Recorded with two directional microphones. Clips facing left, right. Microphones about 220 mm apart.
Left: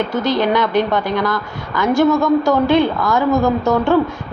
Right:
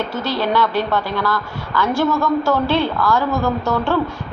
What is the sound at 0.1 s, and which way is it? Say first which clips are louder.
A woman's voice: left 4 dB; 15° left (ahead or behind).